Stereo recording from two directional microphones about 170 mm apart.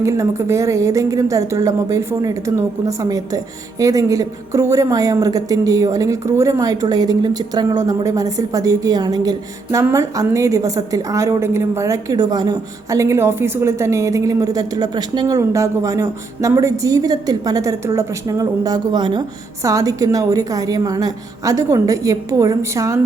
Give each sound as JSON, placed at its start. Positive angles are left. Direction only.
{"t": 0.0, "sound": "a woman's voice", "side_deg": -15}